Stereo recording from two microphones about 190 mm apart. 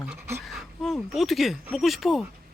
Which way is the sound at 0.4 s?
Centre (ahead or behind).